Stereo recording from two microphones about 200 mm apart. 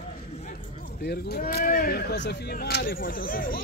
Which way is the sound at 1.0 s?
55° left (ahead or behind).